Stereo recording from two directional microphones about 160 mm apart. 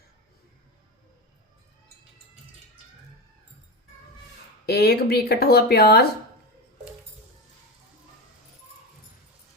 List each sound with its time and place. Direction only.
4.6 s speech: 85° left